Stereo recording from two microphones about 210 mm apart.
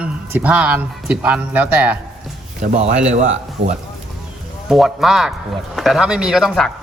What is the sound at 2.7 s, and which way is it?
A man's voice, 35° right (ahead or behind).